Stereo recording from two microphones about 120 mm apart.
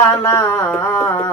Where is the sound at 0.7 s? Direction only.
15° left (ahead or behind).